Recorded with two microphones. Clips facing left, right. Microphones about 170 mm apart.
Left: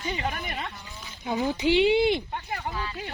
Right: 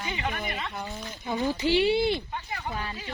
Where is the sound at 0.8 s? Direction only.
50° right (ahead or behind).